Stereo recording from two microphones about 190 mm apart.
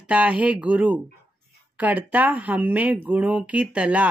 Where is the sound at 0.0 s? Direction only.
5° right (ahead or behind).